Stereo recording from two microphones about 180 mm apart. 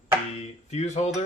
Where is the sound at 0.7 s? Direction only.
35° left (ahead or behind).